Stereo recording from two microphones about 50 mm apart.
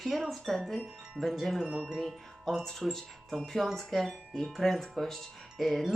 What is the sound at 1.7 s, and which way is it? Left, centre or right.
Wind chime, centre.